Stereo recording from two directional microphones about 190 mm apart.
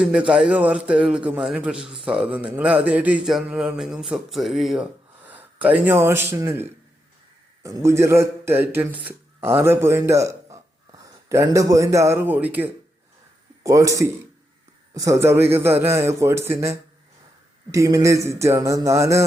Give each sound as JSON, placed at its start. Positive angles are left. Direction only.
{"t": 0.0, "sound": "a man's voice", "side_deg": -5}